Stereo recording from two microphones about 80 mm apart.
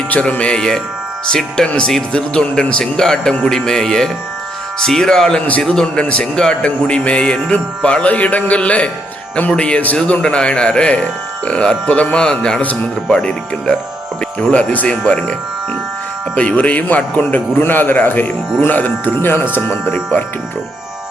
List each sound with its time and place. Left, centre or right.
0.1 s a man's voice: centre